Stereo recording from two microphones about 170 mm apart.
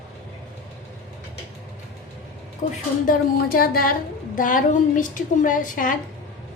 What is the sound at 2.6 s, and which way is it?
Speech, 40° left (ahead or behind).